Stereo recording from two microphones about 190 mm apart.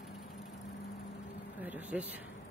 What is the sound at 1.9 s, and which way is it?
Speech, 5° right (ahead or behind).